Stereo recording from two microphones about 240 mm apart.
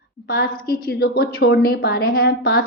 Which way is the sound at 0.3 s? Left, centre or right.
Left.